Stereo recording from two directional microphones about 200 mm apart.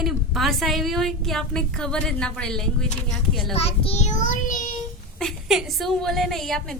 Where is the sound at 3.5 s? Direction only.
30° left (ahead or behind).